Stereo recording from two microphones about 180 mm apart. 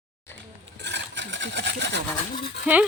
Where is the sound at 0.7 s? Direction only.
75° right (ahead or behind).